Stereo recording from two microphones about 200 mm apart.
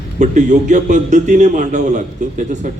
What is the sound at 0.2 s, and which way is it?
A man's voice, 35° right (ahead or behind).